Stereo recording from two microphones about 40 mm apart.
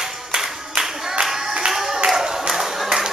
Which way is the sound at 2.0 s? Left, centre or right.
Centre.